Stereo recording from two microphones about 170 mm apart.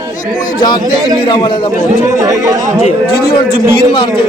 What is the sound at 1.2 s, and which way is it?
Speech, 25° left (ahead or behind).